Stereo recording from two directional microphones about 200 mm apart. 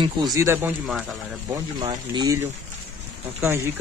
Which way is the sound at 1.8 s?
20° right (ahead or behind).